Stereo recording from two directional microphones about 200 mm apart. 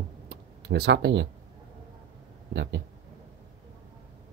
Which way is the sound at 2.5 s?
60° right (ahead or behind).